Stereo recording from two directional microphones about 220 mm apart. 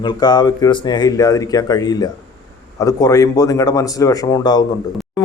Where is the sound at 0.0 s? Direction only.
20° left (ahead or behind).